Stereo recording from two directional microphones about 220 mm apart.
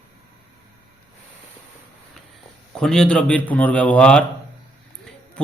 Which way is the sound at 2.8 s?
5° left (ahead or behind).